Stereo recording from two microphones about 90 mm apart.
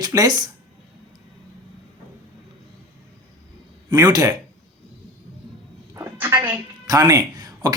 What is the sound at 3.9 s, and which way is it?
Speech, 45° right (ahead or behind).